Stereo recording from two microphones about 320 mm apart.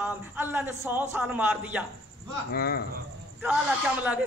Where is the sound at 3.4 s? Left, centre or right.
Centre.